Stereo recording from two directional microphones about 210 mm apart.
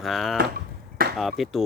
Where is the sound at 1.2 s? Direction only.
Centre (ahead or behind).